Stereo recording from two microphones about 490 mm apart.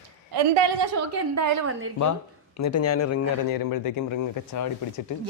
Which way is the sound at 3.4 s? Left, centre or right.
Left.